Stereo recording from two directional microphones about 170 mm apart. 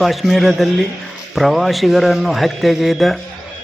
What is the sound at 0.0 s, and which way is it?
A man's voice, centre (ahead or behind).